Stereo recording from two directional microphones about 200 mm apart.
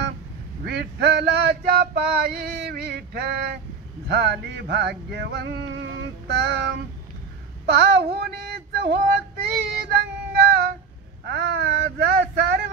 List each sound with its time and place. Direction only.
0.7 s male singing: 55° right (ahead or behind)
7.6 s child singing: 55° right (ahead or behind)
9.8 s female singing: 50° right (ahead or behind)
11.2 s male singing: 55° right (ahead or behind)